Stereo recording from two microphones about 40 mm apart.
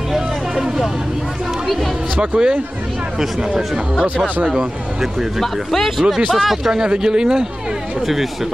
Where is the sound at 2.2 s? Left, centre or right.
Right.